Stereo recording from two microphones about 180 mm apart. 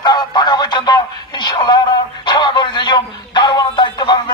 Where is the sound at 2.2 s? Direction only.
25° left (ahead or behind).